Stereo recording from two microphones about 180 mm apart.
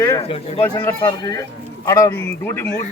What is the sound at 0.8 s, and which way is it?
Speech, 20° left (ahead or behind).